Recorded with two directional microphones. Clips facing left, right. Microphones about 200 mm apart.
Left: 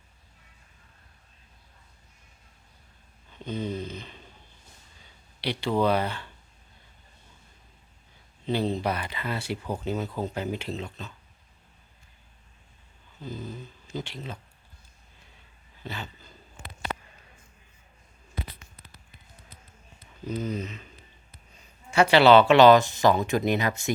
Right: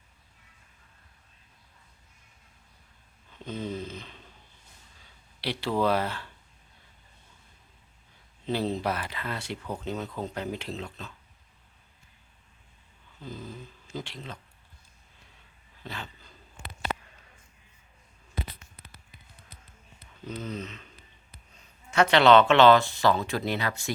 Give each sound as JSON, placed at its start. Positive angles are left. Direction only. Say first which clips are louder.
{"t": 3.3, "sound": "a sound", "louder": "left 2 dB", "side_deg": 0}
{"t": 5.4, "sound": "speech", "louder": "left 2 dB", "side_deg": 0}
{"t": 8.4, "sound": "speech", "louder": "left 2 dB", "side_deg": 0}
{"t": 13.2, "sound": "speech", "louder": "left 3 dB", "side_deg": 0}
{"t": 15.8, "sound": "a sound", "louder": "left 2 dB", "side_deg": 0}
{"t": 20.2, "sound": "speech", "louder": "left 5 dB", "side_deg": 10}
{"t": 21.8, "sound": "speech", "louder": "left 2 dB", "side_deg": 10}